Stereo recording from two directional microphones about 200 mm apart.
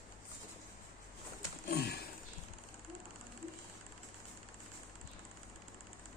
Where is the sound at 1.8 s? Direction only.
55° left (ahead or behind).